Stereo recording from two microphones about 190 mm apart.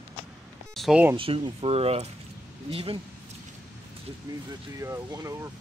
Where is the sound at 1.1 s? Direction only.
30° right (ahead or behind).